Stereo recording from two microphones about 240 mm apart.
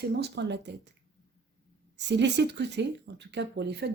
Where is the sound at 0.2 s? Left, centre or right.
Right.